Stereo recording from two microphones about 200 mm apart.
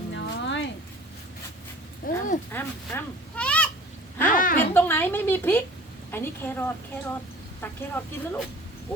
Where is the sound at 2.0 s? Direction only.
40° left (ahead or behind).